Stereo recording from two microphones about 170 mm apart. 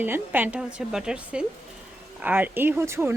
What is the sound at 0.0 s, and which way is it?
A woman's voice, 10° right (ahead or behind).